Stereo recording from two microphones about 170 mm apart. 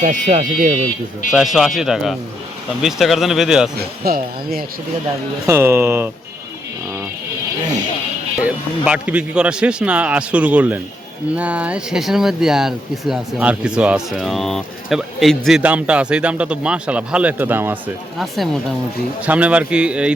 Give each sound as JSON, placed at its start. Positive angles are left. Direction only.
{"t": 0.0, "sound": "speech", "side_deg": -45}
{"t": 1.3, "sound": "speech", "side_deg": -5}
{"t": 3.8, "sound": "speech", "side_deg": -65}
{"t": 5.5, "sound": "speech", "side_deg": -15}
{"t": 8.4, "sound": "speech", "side_deg": -5}
{"t": 18.2, "sound": "speech", "side_deg": 0}